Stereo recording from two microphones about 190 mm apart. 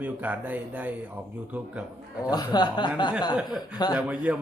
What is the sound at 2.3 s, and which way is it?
Speech, 20° left (ahead or behind).